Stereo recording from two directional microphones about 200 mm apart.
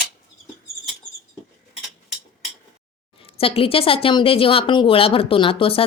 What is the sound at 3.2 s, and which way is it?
Speech, 30° left (ahead or behind).